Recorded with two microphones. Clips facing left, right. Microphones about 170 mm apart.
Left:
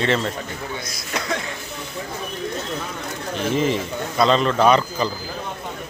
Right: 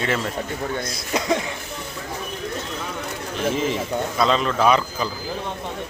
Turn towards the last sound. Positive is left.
turn(degrees=-5)  # may be behind; listen again after turning